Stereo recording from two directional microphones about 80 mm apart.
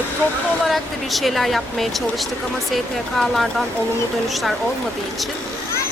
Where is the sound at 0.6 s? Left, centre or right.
Centre.